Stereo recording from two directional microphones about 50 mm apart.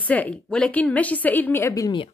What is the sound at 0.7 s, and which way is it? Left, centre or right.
Speech, left.